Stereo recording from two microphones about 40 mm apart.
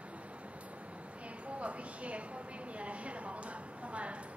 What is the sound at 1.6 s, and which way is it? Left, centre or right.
Speech, right.